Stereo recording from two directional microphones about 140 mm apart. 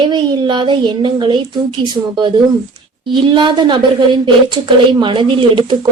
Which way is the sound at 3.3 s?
35° right (ahead or behind).